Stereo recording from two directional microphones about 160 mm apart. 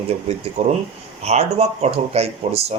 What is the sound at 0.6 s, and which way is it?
Speech, 40° right (ahead or behind).